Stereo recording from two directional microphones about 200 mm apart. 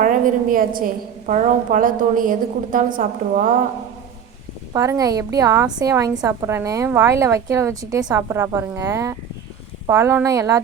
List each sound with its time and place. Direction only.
0.0 s a woman's voice: 40° right (ahead or behind)
4.7 s a woman's voice: 15° right (ahead or behind)